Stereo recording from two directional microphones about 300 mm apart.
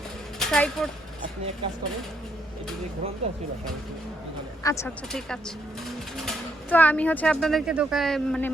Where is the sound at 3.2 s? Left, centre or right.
Centre.